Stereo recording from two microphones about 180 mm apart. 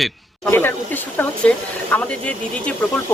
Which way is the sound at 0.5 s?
10° left (ahead or behind).